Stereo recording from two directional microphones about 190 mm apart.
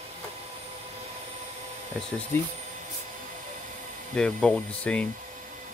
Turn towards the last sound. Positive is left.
turn(degrees=5)  # may be behind; listen again after turning